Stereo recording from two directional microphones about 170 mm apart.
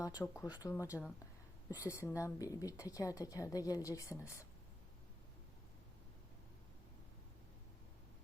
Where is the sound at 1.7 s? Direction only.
20° left (ahead or behind).